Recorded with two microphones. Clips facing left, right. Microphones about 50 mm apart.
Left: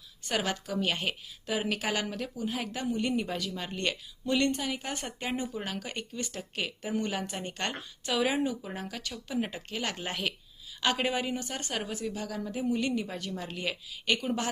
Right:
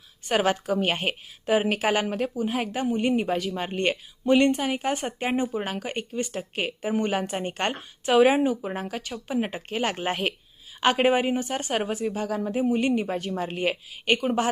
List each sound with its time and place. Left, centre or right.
0.3 s a woman's voice: right